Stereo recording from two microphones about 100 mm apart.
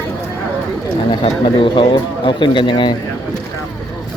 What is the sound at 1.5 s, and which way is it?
Speech, 55° left (ahead or behind).